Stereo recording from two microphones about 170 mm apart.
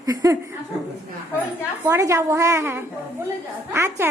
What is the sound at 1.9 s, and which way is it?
A woman's voice, 20° right (ahead or behind).